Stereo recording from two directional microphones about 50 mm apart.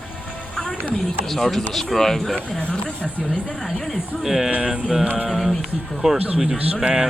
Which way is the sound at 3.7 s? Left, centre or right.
Centre.